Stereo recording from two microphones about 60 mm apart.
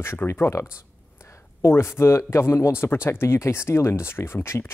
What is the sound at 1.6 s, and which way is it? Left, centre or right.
Speech, left.